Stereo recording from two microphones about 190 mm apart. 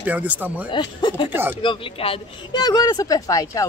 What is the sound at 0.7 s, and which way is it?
Speech, 25° left (ahead or behind).